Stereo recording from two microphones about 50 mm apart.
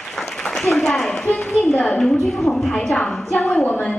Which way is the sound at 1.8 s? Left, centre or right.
Centre.